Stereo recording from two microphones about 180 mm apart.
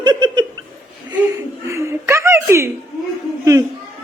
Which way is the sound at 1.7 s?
15° right (ahead or behind).